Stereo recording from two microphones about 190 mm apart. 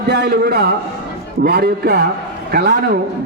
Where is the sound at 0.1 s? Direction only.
55° right (ahead or behind).